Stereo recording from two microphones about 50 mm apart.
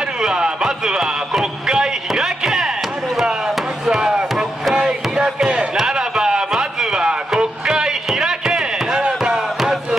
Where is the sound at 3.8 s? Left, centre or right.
Centre.